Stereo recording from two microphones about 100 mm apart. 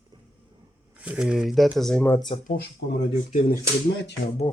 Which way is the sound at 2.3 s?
70° left (ahead or behind).